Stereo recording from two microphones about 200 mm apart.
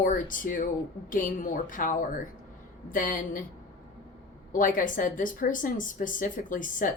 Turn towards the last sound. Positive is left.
turn(degrees=40)  # may be behind; listen again after turning